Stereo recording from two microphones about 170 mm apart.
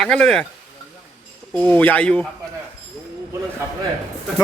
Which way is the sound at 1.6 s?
10° left (ahead or behind).